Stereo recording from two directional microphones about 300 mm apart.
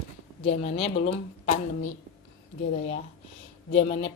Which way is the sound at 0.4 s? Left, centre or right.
Centre.